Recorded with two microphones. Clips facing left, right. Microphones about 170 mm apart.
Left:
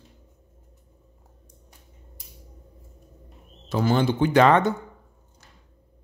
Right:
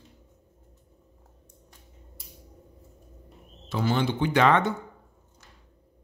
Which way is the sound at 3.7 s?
45° left (ahead or behind).